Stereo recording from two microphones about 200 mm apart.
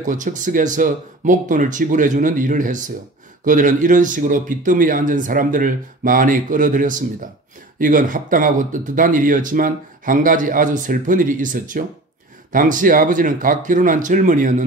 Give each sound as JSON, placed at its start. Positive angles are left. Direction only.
{"t": 0.0, "sound": "speech", "side_deg": -40}